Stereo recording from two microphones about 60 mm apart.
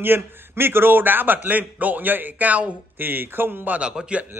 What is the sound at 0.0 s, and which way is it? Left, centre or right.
A man's voice, right.